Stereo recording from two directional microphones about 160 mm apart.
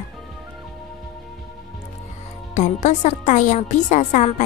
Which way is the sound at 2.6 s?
50° left (ahead or behind).